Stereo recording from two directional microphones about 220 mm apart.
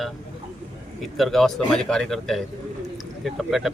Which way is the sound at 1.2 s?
Centre (ahead or behind).